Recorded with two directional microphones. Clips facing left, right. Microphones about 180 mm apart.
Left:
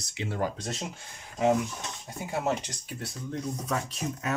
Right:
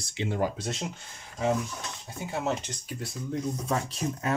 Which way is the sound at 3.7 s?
30° right (ahead or behind).